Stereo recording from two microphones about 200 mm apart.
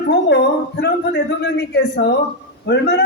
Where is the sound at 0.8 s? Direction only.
60° left (ahead or behind).